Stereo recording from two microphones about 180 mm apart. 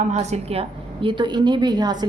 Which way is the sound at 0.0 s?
40° right (ahead or behind).